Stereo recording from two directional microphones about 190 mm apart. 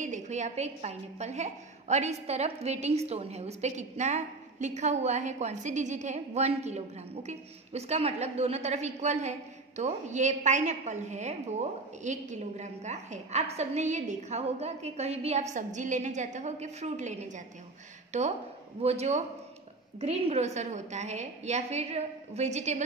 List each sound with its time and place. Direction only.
0.0 s a woman's voice: 40° right (ahead or behind)
18.8 s a woman's voice: 35° right (ahead or behind)